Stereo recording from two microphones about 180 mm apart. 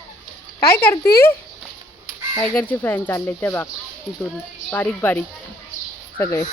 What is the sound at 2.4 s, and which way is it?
Speech, 10° left (ahead or behind).